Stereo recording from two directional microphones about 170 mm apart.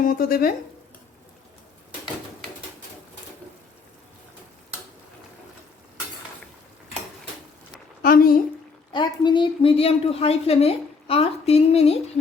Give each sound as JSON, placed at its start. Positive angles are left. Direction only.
{"t": 0.0, "sound": "speech", "side_deg": 55}
{"t": 8.0, "sound": "a sound", "side_deg": 55}
{"t": 8.9, "sound": "a woman's voice", "side_deg": 25}